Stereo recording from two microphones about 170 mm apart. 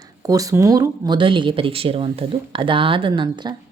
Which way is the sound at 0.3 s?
20° right (ahead or behind).